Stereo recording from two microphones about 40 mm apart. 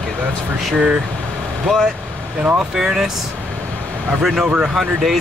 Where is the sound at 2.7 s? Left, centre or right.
Centre.